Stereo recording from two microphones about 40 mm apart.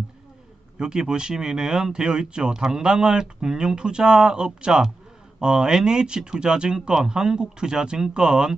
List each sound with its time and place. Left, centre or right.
0.7 s speech: centre